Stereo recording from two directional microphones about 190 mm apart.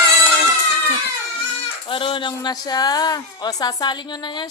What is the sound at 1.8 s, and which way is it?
Speech, 25° left (ahead or behind).